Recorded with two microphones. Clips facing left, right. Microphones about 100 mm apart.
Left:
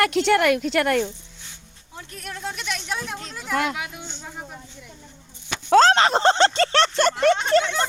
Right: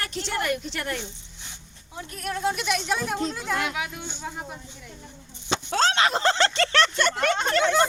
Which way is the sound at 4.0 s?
10° right (ahead or behind).